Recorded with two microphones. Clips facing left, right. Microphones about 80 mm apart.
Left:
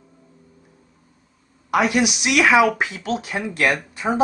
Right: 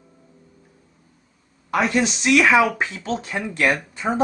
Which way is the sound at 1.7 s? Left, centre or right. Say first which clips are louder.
Left 2 dB; centre.